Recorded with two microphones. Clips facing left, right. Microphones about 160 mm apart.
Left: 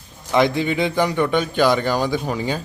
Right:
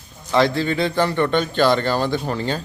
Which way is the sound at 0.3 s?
15° left (ahead or behind).